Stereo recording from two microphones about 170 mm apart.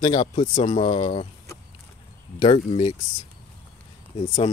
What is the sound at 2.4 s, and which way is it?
Speech, 30° left (ahead or behind).